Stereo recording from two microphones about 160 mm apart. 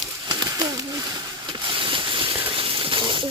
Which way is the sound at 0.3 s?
25° right (ahead or behind).